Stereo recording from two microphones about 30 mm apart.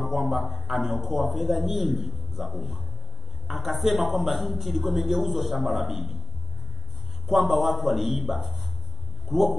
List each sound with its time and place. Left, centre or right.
0.1 s a man's voice: centre
7.2 s a man's voice: centre
9.3 s speech: centre